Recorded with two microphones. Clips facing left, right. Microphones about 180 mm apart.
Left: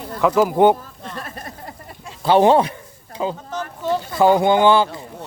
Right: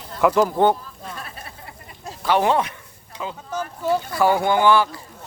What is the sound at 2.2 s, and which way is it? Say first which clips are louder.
Speech: left 6 dB; 30° left (ahead or behind).